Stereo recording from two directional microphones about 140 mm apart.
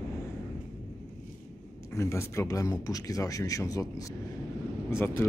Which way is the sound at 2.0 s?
20° left (ahead or behind).